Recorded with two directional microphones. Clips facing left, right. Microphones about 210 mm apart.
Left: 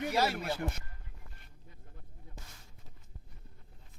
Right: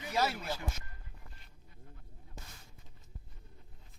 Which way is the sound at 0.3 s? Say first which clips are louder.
Left 4 dB; 60° left (ahead or behind).